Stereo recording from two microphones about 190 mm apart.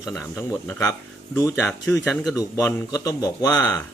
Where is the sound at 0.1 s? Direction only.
10° left (ahead or behind).